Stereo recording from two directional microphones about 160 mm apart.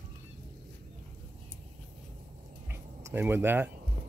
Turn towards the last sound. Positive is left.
turn(degrees=-15)  # may be behind; listen again after turning